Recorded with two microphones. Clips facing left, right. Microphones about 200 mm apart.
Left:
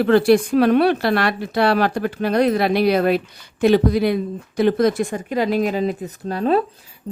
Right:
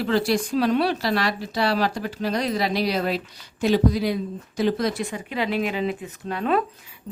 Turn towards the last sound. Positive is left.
turn(degrees=35)  # may be behind; listen again after turning